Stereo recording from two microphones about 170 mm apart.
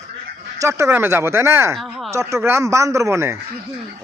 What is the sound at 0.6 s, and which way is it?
Speech, 15° right (ahead or behind).